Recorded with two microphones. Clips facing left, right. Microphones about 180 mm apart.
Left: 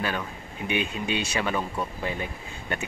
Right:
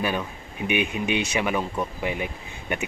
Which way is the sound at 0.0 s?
15° right (ahead or behind).